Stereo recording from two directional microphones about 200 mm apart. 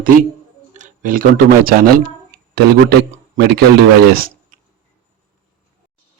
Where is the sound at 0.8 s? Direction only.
45° right (ahead or behind).